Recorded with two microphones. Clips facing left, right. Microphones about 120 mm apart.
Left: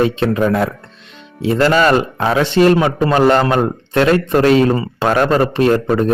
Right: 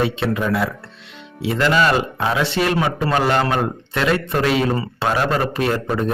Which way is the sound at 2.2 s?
35° left (ahead or behind).